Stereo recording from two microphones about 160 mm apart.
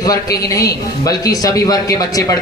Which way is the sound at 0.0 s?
20° left (ahead or behind).